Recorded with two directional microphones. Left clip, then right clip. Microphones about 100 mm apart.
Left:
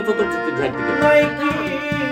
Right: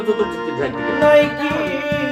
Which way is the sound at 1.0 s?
50° left (ahead or behind).